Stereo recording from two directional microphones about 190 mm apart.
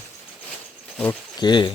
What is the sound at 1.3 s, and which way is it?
Speech, 25° left (ahead or behind).